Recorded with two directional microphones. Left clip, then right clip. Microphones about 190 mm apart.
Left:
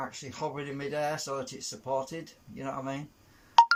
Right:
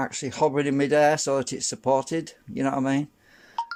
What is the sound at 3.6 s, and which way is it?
Music, 45° left (ahead or behind).